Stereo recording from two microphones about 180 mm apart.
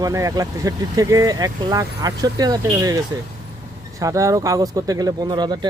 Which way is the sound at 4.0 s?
15° right (ahead or behind).